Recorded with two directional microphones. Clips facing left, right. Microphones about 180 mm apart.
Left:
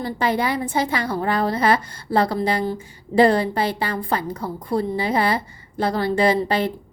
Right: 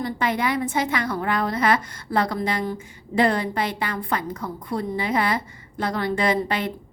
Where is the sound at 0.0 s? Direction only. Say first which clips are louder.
Left 2 dB; 35° left (ahead or behind).